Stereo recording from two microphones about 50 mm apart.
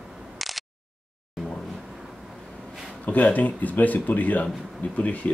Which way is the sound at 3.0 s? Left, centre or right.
Left.